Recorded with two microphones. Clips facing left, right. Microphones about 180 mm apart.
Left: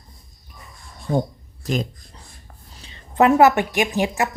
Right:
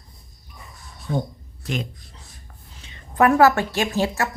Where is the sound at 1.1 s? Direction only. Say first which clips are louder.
Left 4 dB; centre (ahead or behind).